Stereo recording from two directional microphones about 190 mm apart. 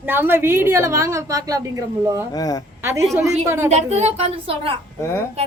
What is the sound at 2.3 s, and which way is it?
Speech, 20° left (ahead or behind).